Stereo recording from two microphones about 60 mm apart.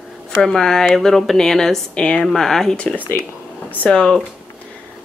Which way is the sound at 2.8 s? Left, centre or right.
Centre.